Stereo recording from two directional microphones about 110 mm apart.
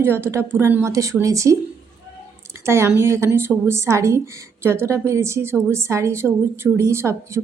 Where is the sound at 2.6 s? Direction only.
25° right (ahead or behind).